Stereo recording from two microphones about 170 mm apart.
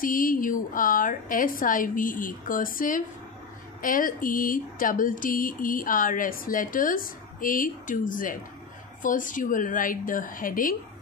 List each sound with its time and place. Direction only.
0.0 s speech: 55° left (ahead or behind)